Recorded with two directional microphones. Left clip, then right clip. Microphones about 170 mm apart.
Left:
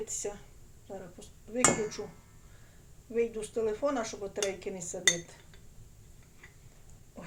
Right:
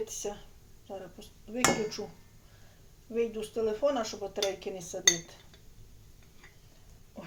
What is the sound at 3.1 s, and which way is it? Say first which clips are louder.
Speech: even; 15° right (ahead or behind).